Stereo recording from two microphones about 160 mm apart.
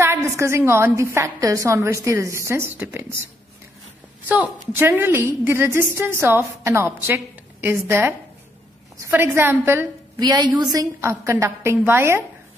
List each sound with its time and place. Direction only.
0.0 s a woman's voice: 15° right (ahead or behind)
4.3 s a woman's voice: 10° right (ahead or behind)
10.2 s a woman's voice: 25° right (ahead or behind)